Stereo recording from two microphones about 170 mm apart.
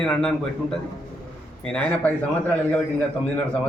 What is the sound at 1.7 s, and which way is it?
Speech, 5° left (ahead or behind).